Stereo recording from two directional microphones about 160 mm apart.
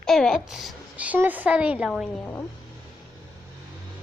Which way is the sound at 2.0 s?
10° left (ahead or behind).